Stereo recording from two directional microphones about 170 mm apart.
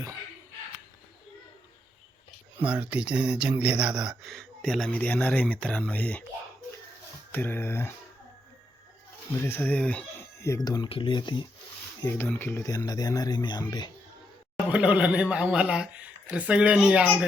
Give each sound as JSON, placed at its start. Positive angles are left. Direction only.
{"t": 2.6, "sound": "speech", "side_deg": -10}
{"t": 7.3, "sound": "speech", "side_deg": 10}
{"t": 9.3, "sound": "speech", "side_deg": 15}
{"t": 12.0, "sound": "speech", "side_deg": 10}
{"t": 14.5, "sound": "speech", "side_deg": -5}